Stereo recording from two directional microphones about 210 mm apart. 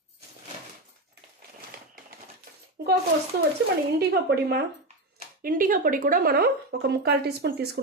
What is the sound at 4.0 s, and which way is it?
A woman's voice, 50° right (ahead or behind).